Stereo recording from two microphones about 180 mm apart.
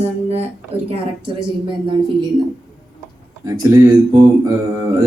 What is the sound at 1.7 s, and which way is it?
Speech, 25° right (ahead or behind).